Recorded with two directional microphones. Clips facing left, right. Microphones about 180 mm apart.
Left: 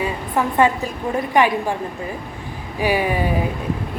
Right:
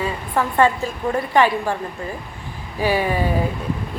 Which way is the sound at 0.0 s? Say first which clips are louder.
Left 1 dB; 15° left (ahead or behind).